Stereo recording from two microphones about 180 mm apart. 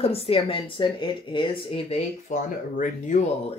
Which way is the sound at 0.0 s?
30° left (ahead or behind).